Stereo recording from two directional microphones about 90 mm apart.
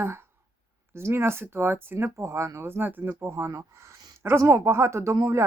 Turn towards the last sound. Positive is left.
turn(degrees=-30)  # may be behind; listen again after turning